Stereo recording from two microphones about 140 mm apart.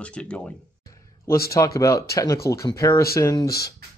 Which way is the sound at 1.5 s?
25° left (ahead or behind).